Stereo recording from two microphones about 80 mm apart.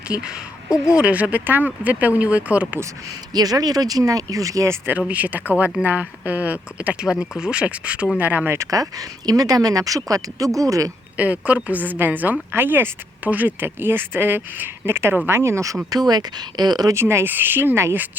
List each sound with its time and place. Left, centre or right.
0.1 s a woman's voice: centre
3.3 s speech: right
4.9 s a woman's voice: centre
8.5 s speech: right
11.2 s a woman's voice: centre; by 15.8 s right
15.9 s speech: right
16.9 s a woman's voice: right